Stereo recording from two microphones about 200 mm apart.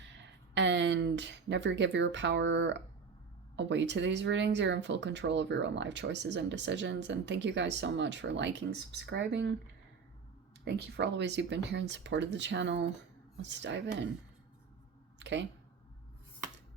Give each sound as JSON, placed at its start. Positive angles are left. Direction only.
{"t": 0.0, "sound": "speech", "side_deg": -60}
{"t": 10.7, "sound": "speech", "side_deg": -55}
{"t": 15.2, "sound": "speech", "side_deg": -60}